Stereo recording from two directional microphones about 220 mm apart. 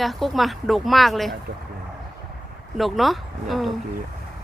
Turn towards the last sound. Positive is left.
turn(degrees=0)  # may be behind; listen again after turning